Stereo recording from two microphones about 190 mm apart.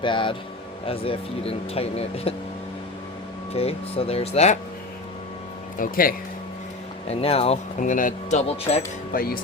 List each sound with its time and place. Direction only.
0.0 s speech: 25° left (ahead or behind)
3.5 s speech: 30° left (ahead or behind)
5.8 s speech: 50° left (ahead or behind)
7.1 s speech: 30° left (ahead or behind)
9.1 s speech: 50° left (ahead or behind)